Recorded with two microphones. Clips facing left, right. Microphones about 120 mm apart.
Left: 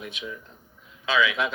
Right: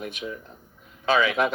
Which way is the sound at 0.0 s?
45° right (ahead or behind).